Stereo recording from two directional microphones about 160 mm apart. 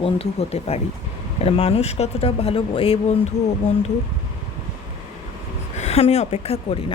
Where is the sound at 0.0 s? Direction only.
40° left (ahead or behind).